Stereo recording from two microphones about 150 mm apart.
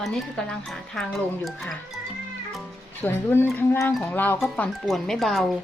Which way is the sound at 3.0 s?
15° left (ahead or behind).